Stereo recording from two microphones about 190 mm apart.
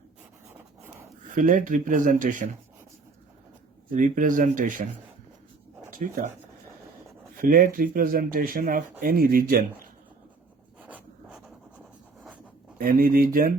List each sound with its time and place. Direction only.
1.4 s speech: 45° right (ahead or behind)
3.9 s speech: 45° right (ahead or behind)
7.3 s speech: 45° right (ahead or behind)
10.8 s writing: 10° right (ahead or behind)
12.8 s speech: 50° right (ahead or behind)